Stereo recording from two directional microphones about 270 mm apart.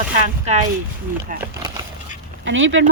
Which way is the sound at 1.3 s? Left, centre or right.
Right.